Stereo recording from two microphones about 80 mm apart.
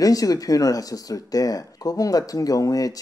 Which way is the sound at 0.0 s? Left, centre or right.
Left.